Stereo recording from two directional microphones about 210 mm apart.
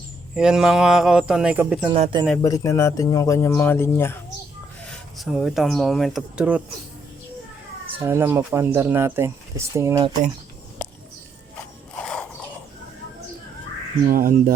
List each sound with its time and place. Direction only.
0.3 s speech: 5° right (ahead or behind)
1.9 s speech: 25° right (ahead or behind)
2.4 s speech: 15° left (ahead or behind)
4.9 s speech: centre (ahead or behind)
7.9 s speech: 10° right (ahead or behind)
11.9 s a sound: 5° left (ahead or behind)
14.1 s speech: 45° right (ahead or behind)